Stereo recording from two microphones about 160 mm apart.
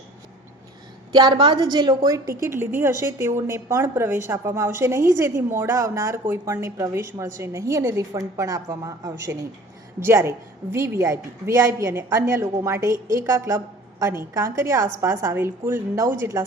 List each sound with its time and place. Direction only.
1.1 s a woman's voice: 30° right (ahead or behind)